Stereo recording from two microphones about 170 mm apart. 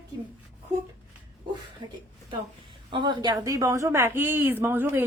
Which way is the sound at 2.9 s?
25° right (ahead or behind).